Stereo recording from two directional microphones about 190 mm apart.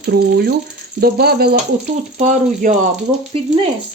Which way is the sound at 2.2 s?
40° right (ahead or behind).